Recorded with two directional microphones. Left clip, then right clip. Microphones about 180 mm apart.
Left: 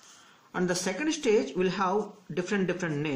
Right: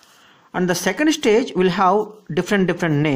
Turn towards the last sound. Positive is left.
turn(degrees=-60)  # may be behind; listen again after turning